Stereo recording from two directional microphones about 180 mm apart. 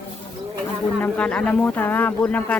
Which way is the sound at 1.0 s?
5° left (ahead or behind).